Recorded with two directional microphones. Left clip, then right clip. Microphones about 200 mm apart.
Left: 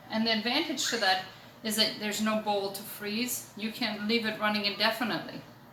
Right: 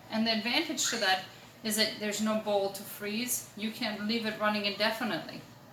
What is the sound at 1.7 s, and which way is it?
Speech, 15° left (ahead or behind).